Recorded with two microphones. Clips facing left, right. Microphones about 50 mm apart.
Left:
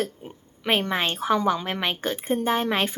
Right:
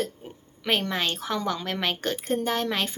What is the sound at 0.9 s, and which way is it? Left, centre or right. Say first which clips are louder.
A woman's voice: left 5 dB; left.